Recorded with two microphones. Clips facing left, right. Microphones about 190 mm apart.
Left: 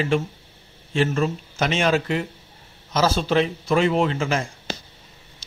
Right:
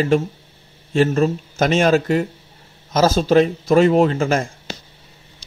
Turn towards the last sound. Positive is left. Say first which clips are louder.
# right 6 dB
turn(degrees=-45)  # may be behind; listen again after turning